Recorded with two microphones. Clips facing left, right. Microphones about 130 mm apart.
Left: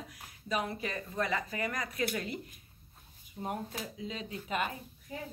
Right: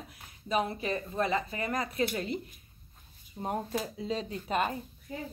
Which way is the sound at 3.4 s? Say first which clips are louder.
Right 5 dB; 35° right (ahead or behind).